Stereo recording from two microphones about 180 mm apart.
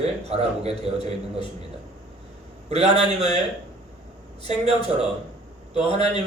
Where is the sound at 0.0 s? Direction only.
35° right (ahead or behind).